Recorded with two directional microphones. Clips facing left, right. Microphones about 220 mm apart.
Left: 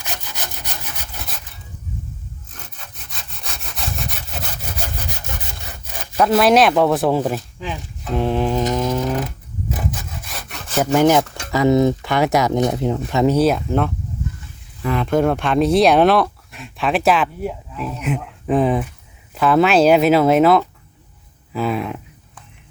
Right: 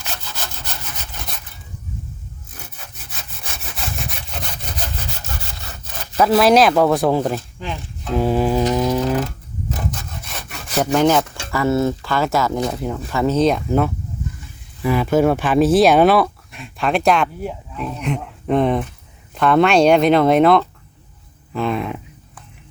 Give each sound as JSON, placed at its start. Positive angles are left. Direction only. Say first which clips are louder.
{"t": 0.0, "sound": "sawing", "louder": "even", "side_deg": 15}
{"t": 2.6, "sound": "sawing", "louder": "right 3 dB", "side_deg": -10}
{"t": 6.1, "sound": "speech", "louder": "right 1 dB", "side_deg": 0}
{"t": 8.9, "sound": "a sound", "louder": "right 2 dB", "side_deg": -5}
{"t": 9.2, "sound": "sawing", "louder": "even", "side_deg": 5}
{"t": 10.9, "sound": "speech", "louder": "left 2 dB", "side_deg": 15}
{"t": 21.5, "sound": "a sound", "louder": "even", "side_deg": 5}